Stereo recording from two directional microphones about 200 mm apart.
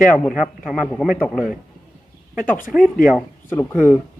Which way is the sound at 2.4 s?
45° left (ahead or behind).